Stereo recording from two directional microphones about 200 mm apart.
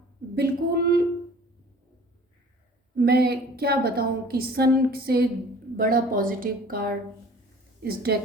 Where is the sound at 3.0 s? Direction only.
50° right (ahead or behind).